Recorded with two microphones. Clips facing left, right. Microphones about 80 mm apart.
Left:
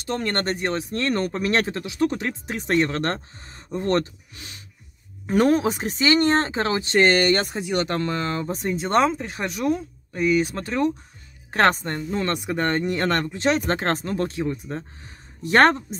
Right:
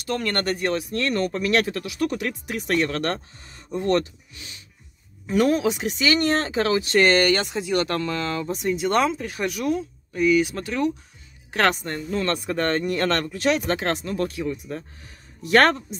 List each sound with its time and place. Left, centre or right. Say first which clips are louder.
0.0 s speech: even; left
12.1 s speech: right 1 dB; centre